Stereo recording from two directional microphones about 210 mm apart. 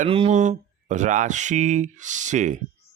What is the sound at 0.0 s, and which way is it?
Speech, 30° right (ahead or behind).